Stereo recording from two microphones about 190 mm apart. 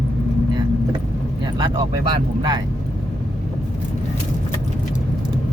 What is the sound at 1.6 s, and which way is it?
Speech, 25° right (ahead or behind).